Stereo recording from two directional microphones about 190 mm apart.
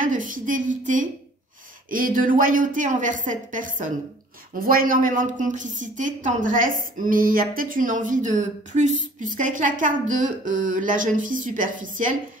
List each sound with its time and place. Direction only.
0.0 s a woman's voice: 45° right (ahead or behind)